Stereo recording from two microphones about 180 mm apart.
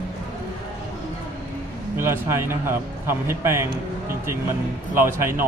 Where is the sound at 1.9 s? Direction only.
15° right (ahead or behind).